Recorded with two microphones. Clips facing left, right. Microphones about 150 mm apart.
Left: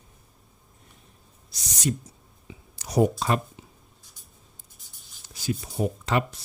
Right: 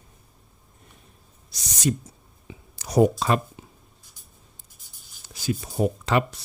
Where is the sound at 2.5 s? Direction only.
75° right (ahead or behind); by 3.4 s 90° right.